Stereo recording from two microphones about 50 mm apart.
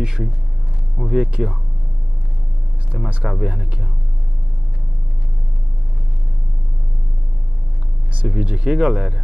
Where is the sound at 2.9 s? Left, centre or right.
Centre.